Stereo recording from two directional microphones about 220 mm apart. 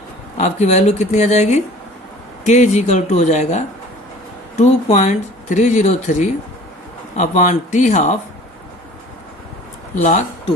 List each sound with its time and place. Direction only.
0.3 s speech: 30° left (ahead or behind)
9.9 s speech: 35° left (ahead or behind)